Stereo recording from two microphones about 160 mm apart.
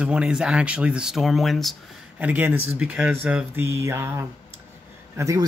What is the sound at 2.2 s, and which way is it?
Speech, 10° right (ahead or behind).